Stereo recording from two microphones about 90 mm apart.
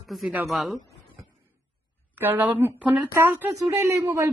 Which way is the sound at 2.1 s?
20° right (ahead or behind).